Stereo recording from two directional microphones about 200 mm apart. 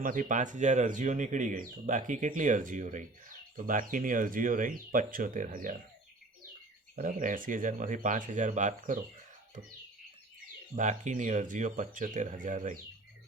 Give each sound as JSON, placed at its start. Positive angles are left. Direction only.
{"t": 0.0, "sound": "speech", "side_deg": -40}
{"t": 6.9, "sound": "speech", "side_deg": -40}
{"t": 10.8, "sound": "speech", "side_deg": -40}